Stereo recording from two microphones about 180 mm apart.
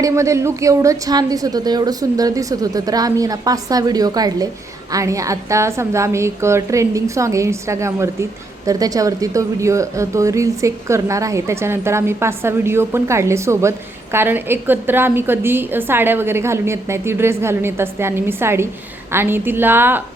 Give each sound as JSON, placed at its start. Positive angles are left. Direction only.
{"t": 0.0, "sound": "a woman's voice", "side_deg": -15}